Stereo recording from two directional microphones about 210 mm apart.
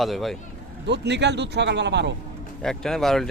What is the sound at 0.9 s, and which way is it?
Speech, 55° right (ahead or behind).